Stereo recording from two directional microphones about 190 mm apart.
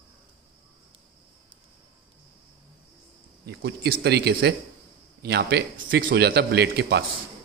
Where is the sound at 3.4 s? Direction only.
60° right (ahead or behind).